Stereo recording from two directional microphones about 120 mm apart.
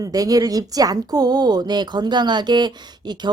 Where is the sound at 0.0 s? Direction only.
30° right (ahead or behind).